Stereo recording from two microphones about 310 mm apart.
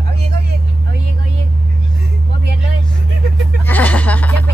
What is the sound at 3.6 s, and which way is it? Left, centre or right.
Music, centre.